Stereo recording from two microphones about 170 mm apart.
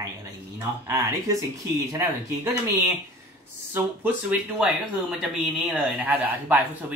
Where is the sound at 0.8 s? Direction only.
20° right (ahead or behind).